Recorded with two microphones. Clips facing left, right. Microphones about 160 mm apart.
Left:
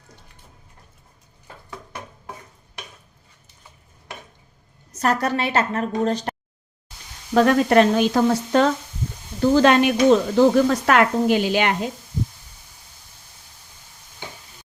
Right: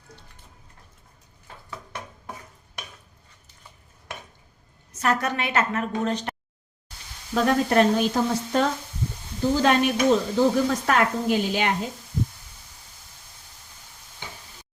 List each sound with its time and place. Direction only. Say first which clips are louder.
4.9 s a woman's voice: left 3 dB; 40° left (ahead or behind)
7.3 s a woman's voice: left 5 dB; 85° left